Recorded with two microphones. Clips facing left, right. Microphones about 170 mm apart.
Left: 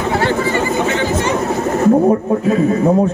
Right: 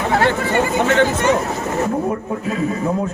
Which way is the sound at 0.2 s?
55° right (ahead or behind).